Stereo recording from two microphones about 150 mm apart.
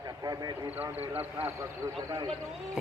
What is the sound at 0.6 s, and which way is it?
Speech, 10° right (ahead or behind).